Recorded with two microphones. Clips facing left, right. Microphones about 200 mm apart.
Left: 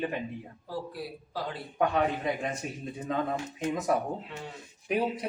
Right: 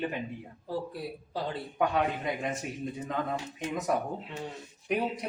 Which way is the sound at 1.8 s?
Centre (ahead or behind).